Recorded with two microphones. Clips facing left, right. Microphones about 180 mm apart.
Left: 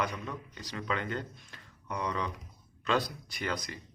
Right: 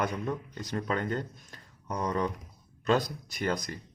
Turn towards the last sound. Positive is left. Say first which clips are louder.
# right 4 dB
turn(degrees=-45)  # may be behind; listen again after turning